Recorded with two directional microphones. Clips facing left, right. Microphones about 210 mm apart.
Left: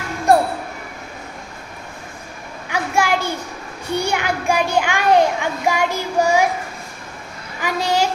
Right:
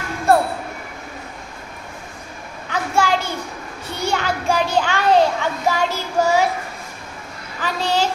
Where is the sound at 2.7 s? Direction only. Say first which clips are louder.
Even; 10° left (ahead or behind).